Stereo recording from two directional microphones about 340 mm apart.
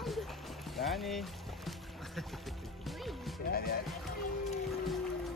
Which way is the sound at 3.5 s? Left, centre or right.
Left.